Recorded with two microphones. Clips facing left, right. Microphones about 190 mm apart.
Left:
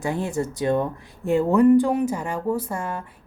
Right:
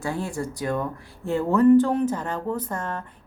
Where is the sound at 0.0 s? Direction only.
20° left (ahead or behind).